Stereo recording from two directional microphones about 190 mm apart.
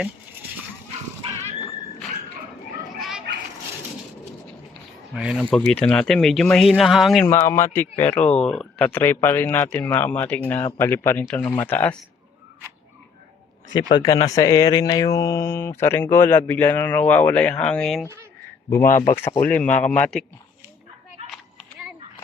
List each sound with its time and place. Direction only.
1.2 s dog: 30° right (ahead or behind)
3.0 s a sound: 5° right (ahead or behind)
5.1 s speech: centre (ahead or behind)
7.3 s speech: 15° left (ahead or behind)
13.9 s speech: 20° left (ahead or behind); by 20.2 s 5° left (ahead or behind)